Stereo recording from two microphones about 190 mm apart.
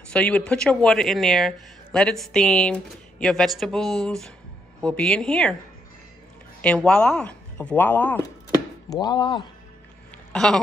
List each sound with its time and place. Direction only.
0.1 s speech: 5° left (ahead or behind)
6.6 s speech: 5° left (ahead or behind)
9.0 s speech: 25° left (ahead or behind)
10.3 s speech: centre (ahead or behind)